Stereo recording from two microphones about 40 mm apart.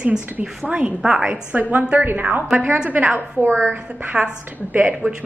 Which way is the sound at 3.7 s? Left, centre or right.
Right.